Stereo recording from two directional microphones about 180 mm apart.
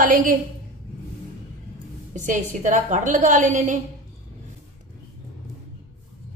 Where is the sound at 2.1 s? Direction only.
45° right (ahead or behind).